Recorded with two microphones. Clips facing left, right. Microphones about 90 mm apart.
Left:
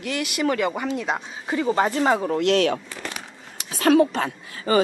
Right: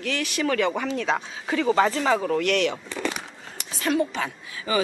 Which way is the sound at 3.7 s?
75° left (ahead or behind).